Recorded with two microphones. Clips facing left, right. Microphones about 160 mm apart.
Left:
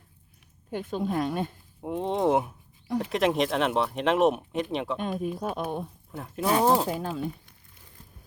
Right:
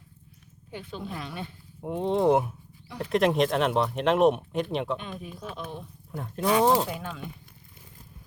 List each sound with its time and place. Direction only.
0.7 s speech: 50° left (ahead or behind)
1.8 s speech: centre (ahead or behind)
4.9 s speech: 45° left (ahead or behind)
6.1 s speech: centre (ahead or behind)
6.8 s speech: 40° left (ahead or behind)